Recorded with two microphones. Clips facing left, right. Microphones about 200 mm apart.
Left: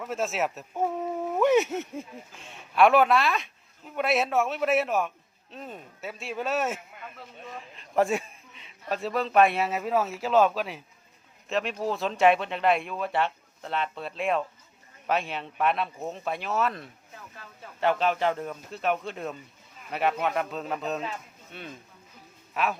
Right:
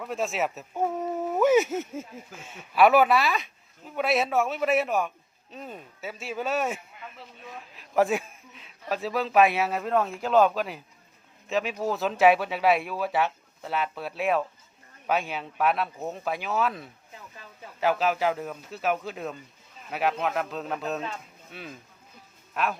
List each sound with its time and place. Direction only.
0.0 s speech: centre (ahead or behind)